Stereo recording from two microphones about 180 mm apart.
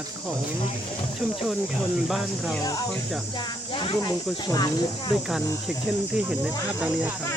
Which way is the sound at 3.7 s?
25° left (ahead or behind).